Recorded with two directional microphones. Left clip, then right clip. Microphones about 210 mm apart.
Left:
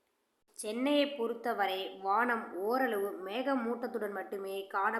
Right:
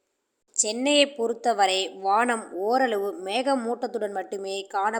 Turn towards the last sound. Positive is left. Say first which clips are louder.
# right 7 dB
turn(degrees=-35)  # may be behind; listen again after turning